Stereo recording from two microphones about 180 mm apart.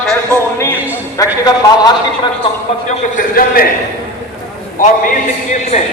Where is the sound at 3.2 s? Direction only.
50° left (ahead or behind).